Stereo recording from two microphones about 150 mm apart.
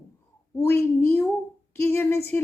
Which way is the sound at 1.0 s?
15° left (ahead or behind).